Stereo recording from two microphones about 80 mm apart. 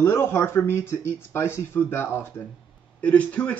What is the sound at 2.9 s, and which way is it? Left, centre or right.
Speech, centre.